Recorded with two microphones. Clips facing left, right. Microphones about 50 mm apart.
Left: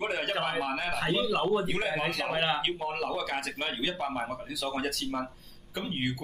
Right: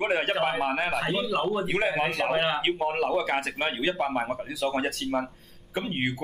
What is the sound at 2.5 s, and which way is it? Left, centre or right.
Speech, centre.